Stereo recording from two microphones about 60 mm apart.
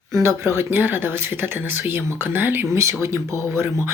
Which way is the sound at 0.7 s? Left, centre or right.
Right.